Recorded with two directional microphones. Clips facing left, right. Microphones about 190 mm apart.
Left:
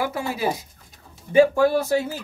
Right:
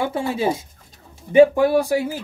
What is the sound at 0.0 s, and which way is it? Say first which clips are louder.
Speech: right 3 dB; 25° right (ahead or behind).